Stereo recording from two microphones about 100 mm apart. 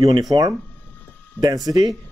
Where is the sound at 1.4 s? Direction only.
35° right (ahead or behind).